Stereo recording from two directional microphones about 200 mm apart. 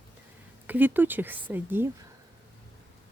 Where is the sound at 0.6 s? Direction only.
10° right (ahead or behind).